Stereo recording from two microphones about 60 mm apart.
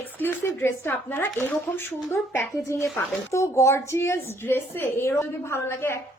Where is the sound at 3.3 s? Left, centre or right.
Left.